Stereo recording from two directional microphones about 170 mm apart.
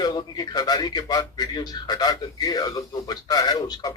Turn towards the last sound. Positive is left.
turn(degrees=20)  # may be behind; listen again after turning